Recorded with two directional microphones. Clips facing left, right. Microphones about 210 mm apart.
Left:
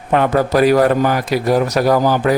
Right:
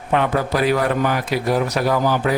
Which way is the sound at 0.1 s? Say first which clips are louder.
Left 5 dB; 45° left (ahead or behind).